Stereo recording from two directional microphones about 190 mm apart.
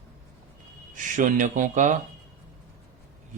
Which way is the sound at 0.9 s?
45° right (ahead or behind).